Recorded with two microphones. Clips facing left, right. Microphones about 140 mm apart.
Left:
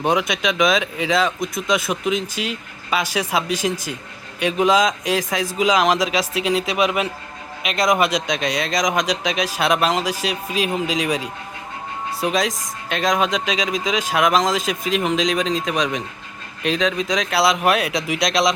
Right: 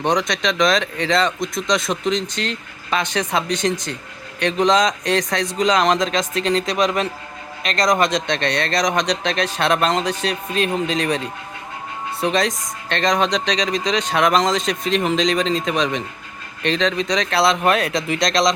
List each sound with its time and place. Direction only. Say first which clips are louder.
0.0 s speech: even; 5° left (ahead or behind)